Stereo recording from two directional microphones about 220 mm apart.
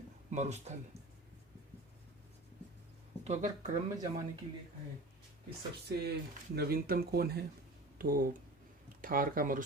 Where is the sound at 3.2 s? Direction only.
30° right (ahead or behind).